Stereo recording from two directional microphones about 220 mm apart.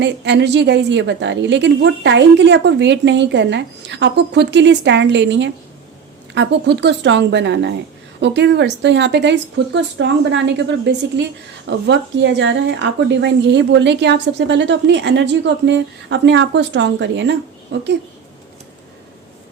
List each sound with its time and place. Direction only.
0.0 s speech: 50° right (ahead or behind)